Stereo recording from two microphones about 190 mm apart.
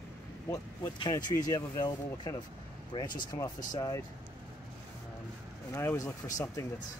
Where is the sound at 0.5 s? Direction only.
20° left (ahead or behind).